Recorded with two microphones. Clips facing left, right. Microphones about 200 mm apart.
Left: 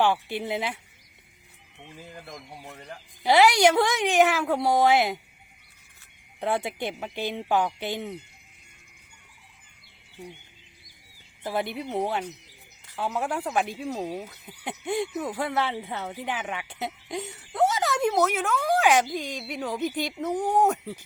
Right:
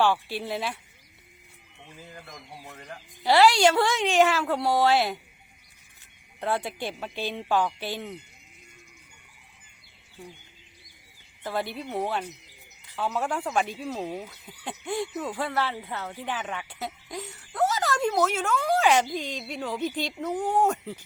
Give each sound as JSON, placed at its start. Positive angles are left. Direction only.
{"t": 0.0, "sound": "speech", "side_deg": 20}
{"t": 2.6, "sound": "speech", "side_deg": 15}
{"t": 6.4, "sound": "speech", "side_deg": 25}
{"t": 11.4, "sound": "speech", "side_deg": 20}
{"t": 17.8, "sound": "speech", "side_deg": 10}